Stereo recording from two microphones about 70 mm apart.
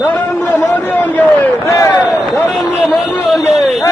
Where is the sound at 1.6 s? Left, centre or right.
Left.